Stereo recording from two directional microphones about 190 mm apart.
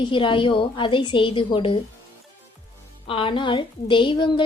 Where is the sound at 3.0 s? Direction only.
30° left (ahead or behind).